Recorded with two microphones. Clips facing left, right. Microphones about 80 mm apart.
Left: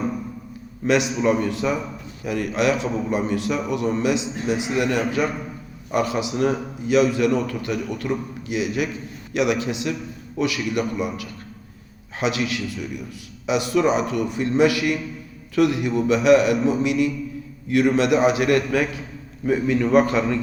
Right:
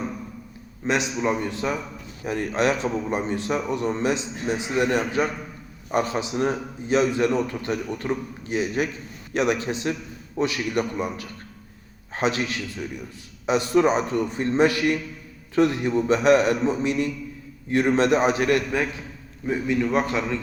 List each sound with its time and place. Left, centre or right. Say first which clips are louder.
0.8 s a man's voice: left 4 dB; centre
2.2 s a man's voice: left 1 dB; right
18.5 s a man's voice: left 3 dB; right
19.7 s a man's voice: left 5 dB; centre